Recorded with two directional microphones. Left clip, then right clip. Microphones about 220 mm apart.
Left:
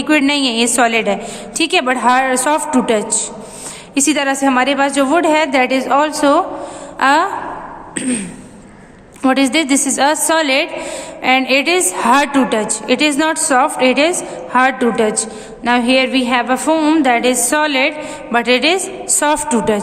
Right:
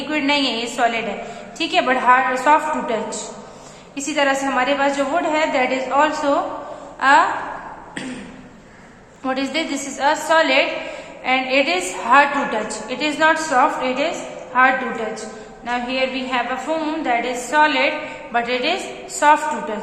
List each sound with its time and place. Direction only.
0.1 s a woman's voice: 55° left (ahead or behind)
9.2 s a woman's voice: 55° left (ahead or behind)